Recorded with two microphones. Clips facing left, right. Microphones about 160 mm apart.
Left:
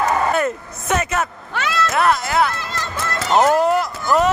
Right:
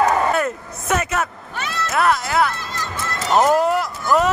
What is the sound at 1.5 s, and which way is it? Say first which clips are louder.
Cat: left 5 dB; 90° left.